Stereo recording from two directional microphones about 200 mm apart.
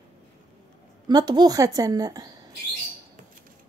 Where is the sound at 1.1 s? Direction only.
20° right (ahead or behind).